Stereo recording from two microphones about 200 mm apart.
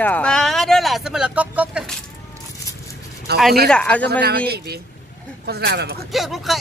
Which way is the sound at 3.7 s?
5° left (ahead or behind).